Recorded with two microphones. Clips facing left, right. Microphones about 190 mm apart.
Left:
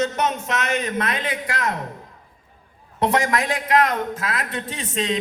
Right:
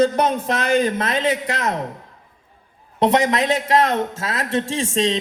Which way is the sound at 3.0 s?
20° right (ahead or behind).